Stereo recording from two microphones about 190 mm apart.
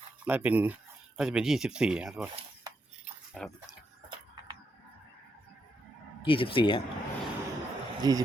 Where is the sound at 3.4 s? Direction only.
Centre (ahead or behind).